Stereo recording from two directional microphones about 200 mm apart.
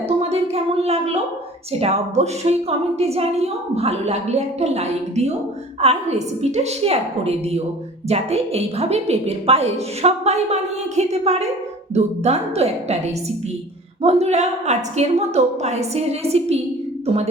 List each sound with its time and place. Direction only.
0.2 s a sound: 30° right (ahead or behind)
1.8 s a woman's voice: 30° right (ahead or behind)
14.0 s a woman's voice: 30° right (ahead or behind)